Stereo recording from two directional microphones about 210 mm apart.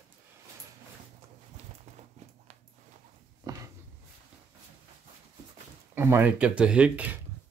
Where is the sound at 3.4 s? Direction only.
15° right (ahead or behind).